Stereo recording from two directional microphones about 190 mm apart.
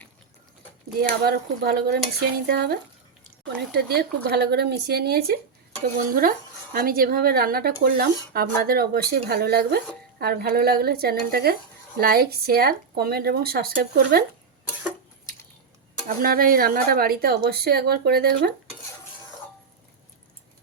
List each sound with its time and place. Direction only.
0.9 s speech: 55° right (ahead or behind)
6.7 s speech: 50° right (ahead or behind)
16.0 s speech: 50° right (ahead or behind)